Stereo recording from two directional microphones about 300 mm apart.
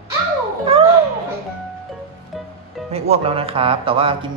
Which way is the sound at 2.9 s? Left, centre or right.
Right.